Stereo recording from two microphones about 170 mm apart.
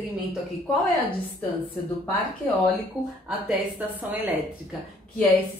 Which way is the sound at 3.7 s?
10° right (ahead or behind).